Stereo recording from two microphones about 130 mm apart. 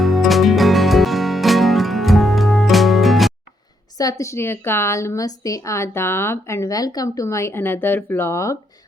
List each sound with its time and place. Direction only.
0.0 s music: centre (ahead or behind)
3.9 s a woman's voice: 25° left (ahead or behind)